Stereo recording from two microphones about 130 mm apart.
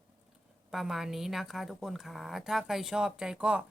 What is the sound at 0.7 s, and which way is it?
A woman's voice, centre (ahead or behind).